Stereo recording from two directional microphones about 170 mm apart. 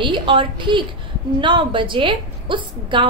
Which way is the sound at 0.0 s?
30° right (ahead or behind).